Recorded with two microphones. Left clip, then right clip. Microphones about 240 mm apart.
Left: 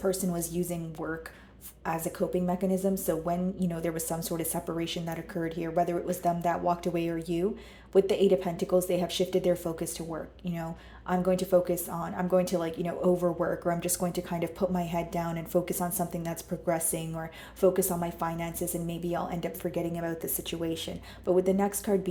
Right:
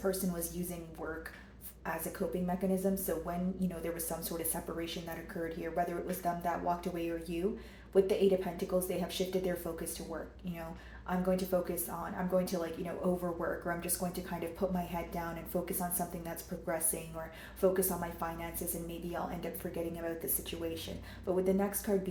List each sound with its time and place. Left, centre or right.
0.0 s speech: left
1.8 s speech: left